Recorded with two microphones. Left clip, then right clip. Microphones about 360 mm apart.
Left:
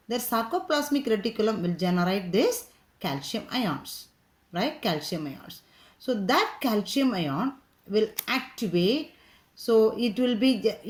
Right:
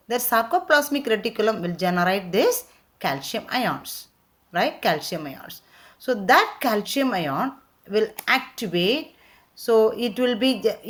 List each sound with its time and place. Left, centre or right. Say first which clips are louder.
0.1 s speech: right 7 dB; right